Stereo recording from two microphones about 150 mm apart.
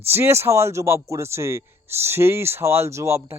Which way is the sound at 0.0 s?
15° right (ahead or behind).